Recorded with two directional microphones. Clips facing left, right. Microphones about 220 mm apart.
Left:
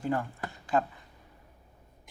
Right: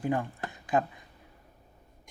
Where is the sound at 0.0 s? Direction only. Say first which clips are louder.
Right 1 dB; 15° right (ahead or behind).